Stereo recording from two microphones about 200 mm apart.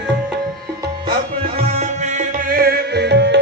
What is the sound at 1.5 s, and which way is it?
Music, 30° right (ahead or behind).